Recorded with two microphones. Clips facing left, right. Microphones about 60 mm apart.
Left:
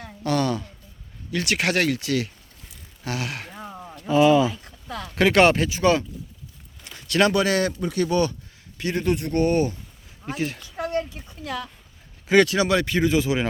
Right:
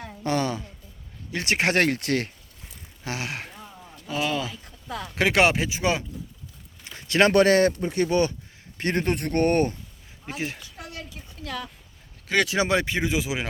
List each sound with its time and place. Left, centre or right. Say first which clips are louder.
0.2 s a sound: left 3 dB; right
1.3 s speech: even; right
1.8 s speech: even; right
3.0 s speech: left 2 dB; right
3.6 s a sound: left 7 dB; left
4.1 s speech: left 10 dB; centre
6.8 s a sound: even; right
7.3 s speech: right 4 dB; right
8.8 s speech: left 1 dB; right
10.2 s speech: left 4 dB; centre
10.8 s a sound: left 12 dB; left
12.5 s speech: left 2 dB; right